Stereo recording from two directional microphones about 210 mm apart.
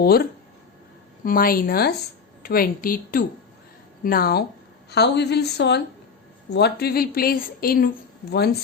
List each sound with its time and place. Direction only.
0.0 s a woman's voice: 45° left (ahead or behind)